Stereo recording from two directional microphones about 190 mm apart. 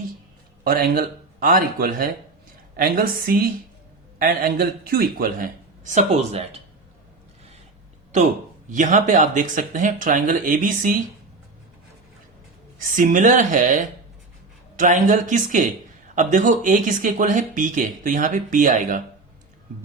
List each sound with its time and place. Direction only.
0.6 s speech: 50° right (ahead or behind); by 6.6 s 35° right (ahead or behind)
8.7 s speech: 40° right (ahead or behind)
13.0 s speech: 45° right (ahead or behind)